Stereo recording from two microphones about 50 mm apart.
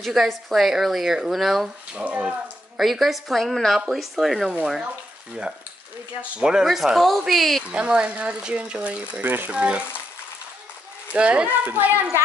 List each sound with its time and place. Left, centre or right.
0.0 s a woman's voice: centre
2.0 s speech: right
2.8 s a woman's voice: centre
6.3 s a woman's voice: centre
7.7 s speech: right
11.1 s speech: right
11.4 s speech: right